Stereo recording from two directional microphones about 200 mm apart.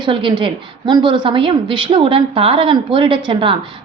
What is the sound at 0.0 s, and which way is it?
A woman's voice, 25° right (ahead or behind).